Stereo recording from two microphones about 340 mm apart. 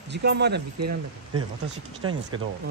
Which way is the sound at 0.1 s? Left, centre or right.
Right.